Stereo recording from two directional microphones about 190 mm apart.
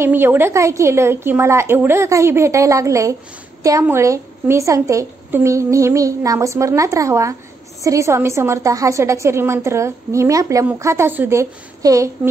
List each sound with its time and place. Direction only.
0.0 s a woman's voice: 10° right (ahead or behind)